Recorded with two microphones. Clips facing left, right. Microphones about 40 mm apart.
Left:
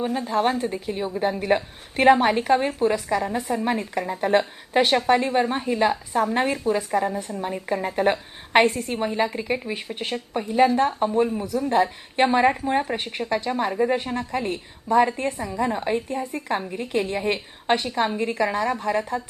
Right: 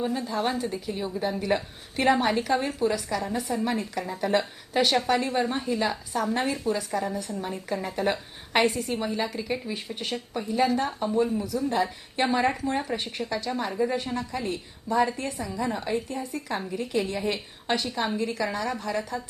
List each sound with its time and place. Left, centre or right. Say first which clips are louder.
0.0 s a woman's voice: left 5 dB; left